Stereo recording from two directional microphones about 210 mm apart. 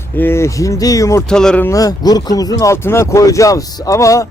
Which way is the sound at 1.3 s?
5° left (ahead or behind).